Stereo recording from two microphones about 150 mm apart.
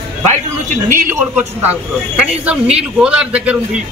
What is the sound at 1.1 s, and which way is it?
A man's voice, 15° right (ahead or behind).